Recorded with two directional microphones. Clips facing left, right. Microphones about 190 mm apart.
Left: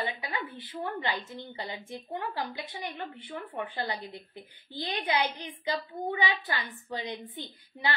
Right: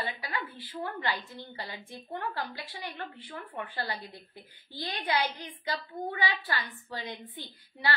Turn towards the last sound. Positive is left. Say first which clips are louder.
# even
turn(degrees=20)  # may be behind; listen again after turning